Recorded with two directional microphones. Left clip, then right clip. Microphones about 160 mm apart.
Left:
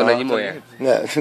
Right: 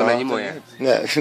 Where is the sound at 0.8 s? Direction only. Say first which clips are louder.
Left 1 dB; 5° left (ahead or behind).